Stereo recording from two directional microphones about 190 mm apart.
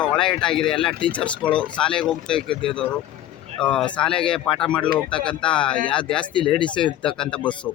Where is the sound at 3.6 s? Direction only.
5° left (ahead or behind).